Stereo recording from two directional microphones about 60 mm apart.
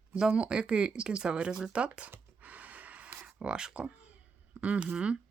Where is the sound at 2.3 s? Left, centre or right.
Right.